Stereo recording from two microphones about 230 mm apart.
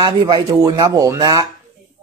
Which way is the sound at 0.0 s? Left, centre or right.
Centre.